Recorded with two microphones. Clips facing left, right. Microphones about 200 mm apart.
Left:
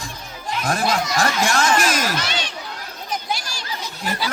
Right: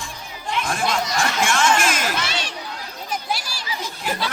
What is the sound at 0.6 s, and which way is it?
Snicker, 40° left (ahead or behind).